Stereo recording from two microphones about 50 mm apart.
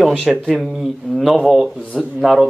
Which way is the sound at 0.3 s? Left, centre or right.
Centre.